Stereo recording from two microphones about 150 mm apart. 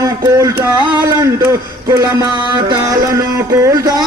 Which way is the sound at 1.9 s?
25° right (ahead or behind).